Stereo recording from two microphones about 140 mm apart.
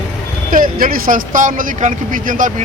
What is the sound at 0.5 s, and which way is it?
Speech, 85° right.